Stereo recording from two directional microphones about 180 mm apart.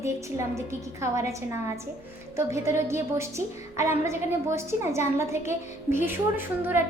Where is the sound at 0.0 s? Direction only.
15° right (ahead or behind).